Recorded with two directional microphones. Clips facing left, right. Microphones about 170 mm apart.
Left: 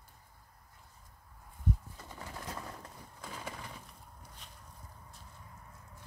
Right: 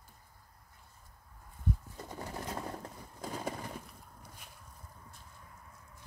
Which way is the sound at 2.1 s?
35° right (ahead or behind).